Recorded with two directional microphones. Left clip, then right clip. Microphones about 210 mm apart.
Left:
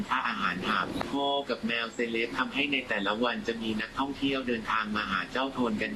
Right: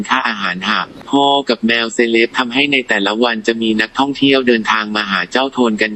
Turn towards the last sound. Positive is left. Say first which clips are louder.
# right 15 dB
turn(degrees=-45)  # may be behind; listen again after turning